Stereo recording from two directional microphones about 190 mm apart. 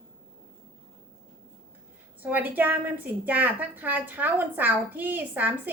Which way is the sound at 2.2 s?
10° right (ahead or behind).